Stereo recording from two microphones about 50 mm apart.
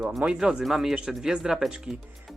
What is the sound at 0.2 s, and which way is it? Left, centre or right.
Speech, right.